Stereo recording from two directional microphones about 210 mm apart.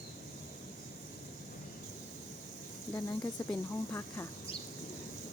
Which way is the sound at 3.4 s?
20° left (ahead or behind).